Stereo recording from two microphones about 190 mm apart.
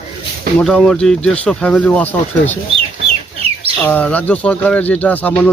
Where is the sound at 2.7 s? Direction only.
30° right (ahead or behind).